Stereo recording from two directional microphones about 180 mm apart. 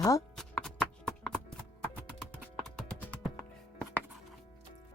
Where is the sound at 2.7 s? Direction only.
5° left (ahead or behind).